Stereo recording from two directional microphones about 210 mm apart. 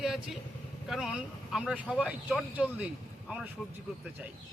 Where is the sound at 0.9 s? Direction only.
5° right (ahead or behind).